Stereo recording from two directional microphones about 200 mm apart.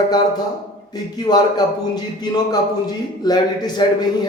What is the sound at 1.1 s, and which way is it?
A man's voice, 20° left (ahead or behind).